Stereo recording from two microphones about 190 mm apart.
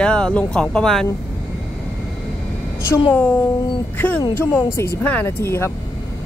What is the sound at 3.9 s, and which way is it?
Speech, 10° left (ahead or behind).